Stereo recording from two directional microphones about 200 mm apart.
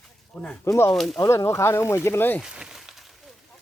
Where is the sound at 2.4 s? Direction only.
5° right (ahead or behind).